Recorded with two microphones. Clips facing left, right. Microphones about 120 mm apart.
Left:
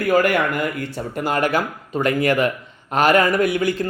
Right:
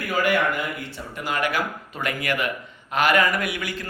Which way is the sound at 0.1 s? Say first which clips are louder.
Left 4 dB; 50° left (ahead or behind).